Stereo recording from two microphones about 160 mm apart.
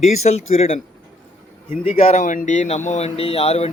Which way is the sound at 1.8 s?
40° left (ahead or behind).